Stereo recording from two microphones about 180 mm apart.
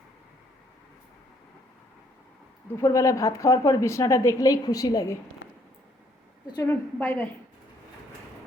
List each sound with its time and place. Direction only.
2.8 s a woman's voice: 20° left (ahead or behind)
6.5 s a woman's voice: 15° left (ahead or behind)